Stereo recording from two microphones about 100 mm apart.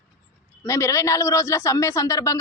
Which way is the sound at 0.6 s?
30° left (ahead or behind).